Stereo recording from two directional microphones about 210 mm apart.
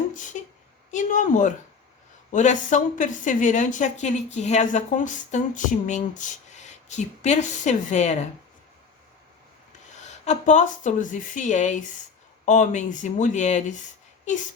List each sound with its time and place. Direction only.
0.4 s a sound: 35° left (ahead or behind)
0.9 s a woman's voice: 35° left (ahead or behind)
10.0 s a woman's voice: 35° left (ahead or behind)